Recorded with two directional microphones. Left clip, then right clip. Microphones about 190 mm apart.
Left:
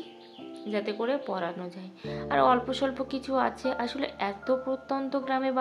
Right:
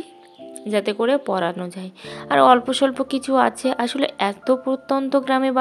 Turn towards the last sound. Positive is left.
turn(degrees=-45)  # may be behind; listen again after turning